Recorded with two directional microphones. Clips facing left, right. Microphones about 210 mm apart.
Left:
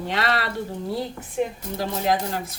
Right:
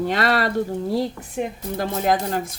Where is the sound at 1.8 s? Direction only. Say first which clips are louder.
Right 2 dB; 50° right (ahead or behind).